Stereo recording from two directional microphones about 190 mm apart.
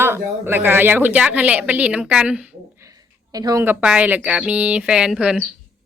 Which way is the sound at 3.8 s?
5° right (ahead or behind).